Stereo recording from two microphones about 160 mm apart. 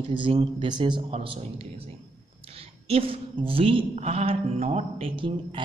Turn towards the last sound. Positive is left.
turn(degrees=-35)  # may be behind; listen again after turning